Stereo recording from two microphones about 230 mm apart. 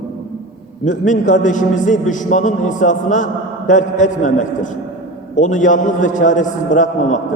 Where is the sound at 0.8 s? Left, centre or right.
Left.